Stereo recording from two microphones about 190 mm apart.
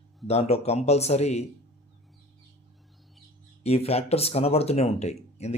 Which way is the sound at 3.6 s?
35° left (ahead or behind).